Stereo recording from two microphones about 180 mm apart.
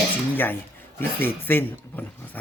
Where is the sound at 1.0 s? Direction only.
10° left (ahead or behind).